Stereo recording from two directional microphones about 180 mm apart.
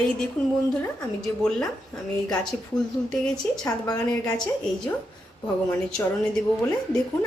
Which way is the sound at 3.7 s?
20° left (ahead or behind).